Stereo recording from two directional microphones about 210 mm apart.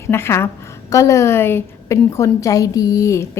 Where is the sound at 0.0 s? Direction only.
10° left (ahead or behind).